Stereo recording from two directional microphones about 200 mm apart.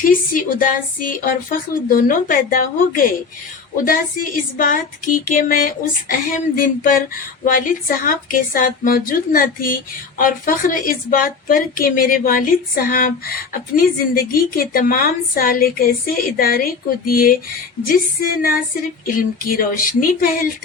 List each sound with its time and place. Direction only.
0.0 s a woman's voice: 40° left (ahead or behind)